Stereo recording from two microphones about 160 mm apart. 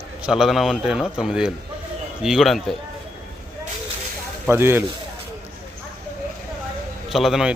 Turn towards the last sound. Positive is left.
turn(degrees=0)  # may be behind; listen again after turning